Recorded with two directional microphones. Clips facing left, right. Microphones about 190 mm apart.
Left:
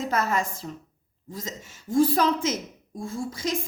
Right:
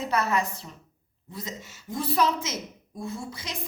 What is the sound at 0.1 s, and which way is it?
A woman's voice, 45° left (ahead or behind).